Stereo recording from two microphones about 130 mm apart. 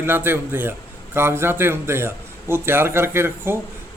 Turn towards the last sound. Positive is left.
turn(degrees=-20)  # may be behind; listen again after turning